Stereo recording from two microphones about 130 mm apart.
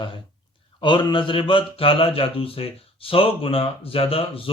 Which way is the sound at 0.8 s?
40° left (ahead or behind).